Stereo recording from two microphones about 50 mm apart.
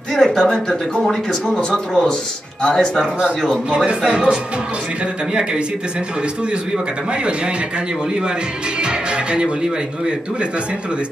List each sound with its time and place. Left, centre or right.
0.1 s speech: centre
3.7 s speech: right
8.8 s speech: centre